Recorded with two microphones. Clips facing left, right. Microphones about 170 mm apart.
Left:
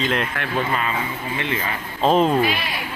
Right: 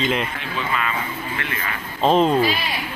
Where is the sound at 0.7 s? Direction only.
35° left (ahead or behind).